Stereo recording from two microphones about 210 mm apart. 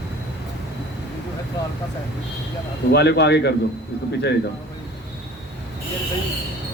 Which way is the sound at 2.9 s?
50° left (ahead or behind).